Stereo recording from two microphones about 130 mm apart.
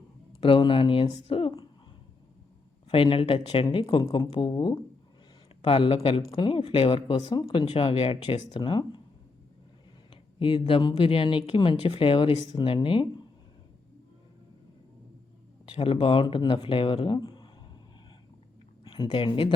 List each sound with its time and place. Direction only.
0.3 s speech: 45° left (ahead or behind)
2.9 s speech: 45° left (ahead or behind)
5.6 s speech: 45° left (ahead or behind)
7.2 s speech: 30° left (ahead or behind)
7.4 s speech: 40° left (ahead or behind)
10.4 s speech: 40° left (ahead or behind)
15.6 s speech: 45° left (ahead or behind)
18.9 s speech: 35° left (ahead or behind)